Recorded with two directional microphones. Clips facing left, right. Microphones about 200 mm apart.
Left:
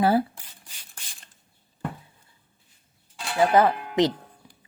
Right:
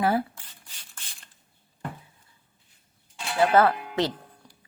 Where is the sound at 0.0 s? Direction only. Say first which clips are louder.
Left 3 dB; 30° left (ahead or behind).